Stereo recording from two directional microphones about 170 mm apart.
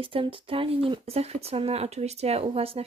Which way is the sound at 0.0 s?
30° right (ahead or behind).